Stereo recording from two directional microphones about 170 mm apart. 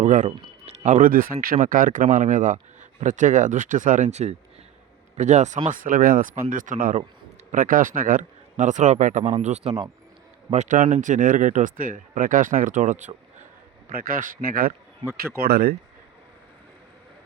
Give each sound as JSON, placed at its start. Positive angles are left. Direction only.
{"t": 0.0, "sound": "speech", "side_deg": -45}
{"t": 5.7, "sound": "speech", "side_deg": -55}
{"t": 15.4, "sound": "speech", "side_deg": -65}